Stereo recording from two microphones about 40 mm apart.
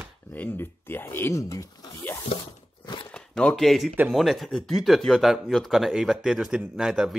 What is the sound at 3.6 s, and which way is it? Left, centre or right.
Speech, centre.